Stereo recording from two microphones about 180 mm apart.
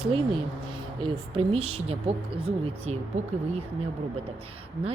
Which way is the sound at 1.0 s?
30° right (ahead or behind).